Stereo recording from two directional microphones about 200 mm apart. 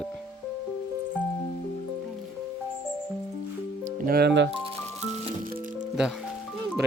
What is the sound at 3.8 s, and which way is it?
Speech, 50° right (ahead or behind).